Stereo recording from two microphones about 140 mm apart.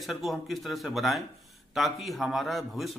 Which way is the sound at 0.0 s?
Centre (ahead or behind).